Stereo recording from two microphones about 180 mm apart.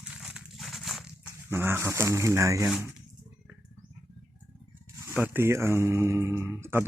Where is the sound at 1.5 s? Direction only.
15° right (ahead or behind).